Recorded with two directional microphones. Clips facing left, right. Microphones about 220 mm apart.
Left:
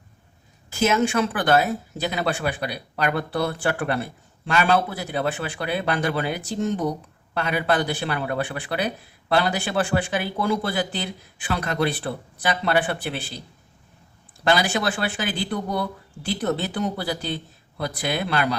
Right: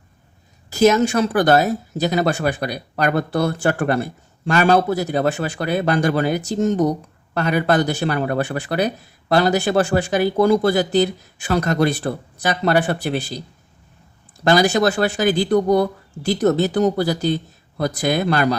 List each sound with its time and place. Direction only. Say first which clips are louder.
0.7 s speech: right 6 dB; 40° right (ahead or behind)
14.4 s speech: right 6 dB; 40° right (ahead or behind)